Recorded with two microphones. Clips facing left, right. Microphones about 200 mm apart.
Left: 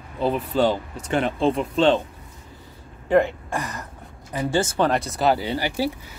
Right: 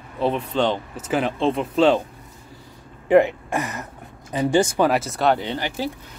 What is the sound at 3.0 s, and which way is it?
Speech, 15° right (ahead or behind).